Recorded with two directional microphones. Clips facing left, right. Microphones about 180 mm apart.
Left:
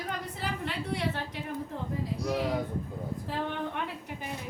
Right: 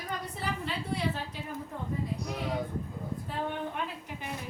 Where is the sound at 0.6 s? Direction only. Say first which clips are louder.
Left 1 dB; 65° left (ahead or behind).